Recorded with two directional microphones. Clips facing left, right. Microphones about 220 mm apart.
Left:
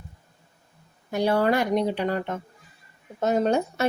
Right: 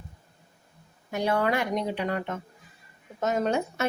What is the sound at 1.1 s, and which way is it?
Speech, 35° left (ahead or behind).